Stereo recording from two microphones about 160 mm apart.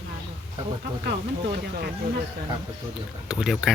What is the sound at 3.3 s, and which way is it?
Speech, 5° right (ahead or behind).